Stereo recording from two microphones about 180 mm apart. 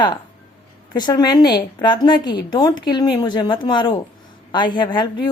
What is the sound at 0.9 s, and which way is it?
A woman's voice, 25° left (ahead or behind).